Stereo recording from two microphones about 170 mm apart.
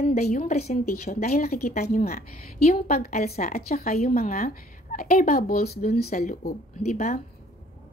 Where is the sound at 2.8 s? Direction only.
60° left (ahead or behind).